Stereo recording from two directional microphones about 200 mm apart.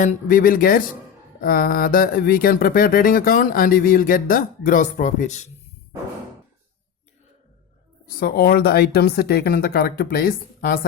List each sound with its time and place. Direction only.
0.0 s speech: 40° left (ahead or behind)
8.0 s speech: 50° left (ahead or behind)